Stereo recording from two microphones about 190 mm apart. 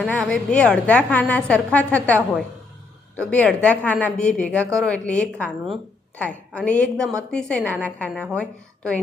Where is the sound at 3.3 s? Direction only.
5° left (ahead or behind).